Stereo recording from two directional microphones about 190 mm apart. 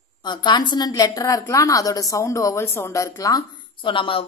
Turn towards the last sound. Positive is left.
turn(degrees=25)  # may be behind; listen again after turning